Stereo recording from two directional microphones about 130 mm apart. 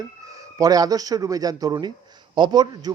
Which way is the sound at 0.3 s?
25° right (ahead or behind).